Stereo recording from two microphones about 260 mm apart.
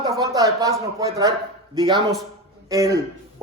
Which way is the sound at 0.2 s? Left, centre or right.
Centre.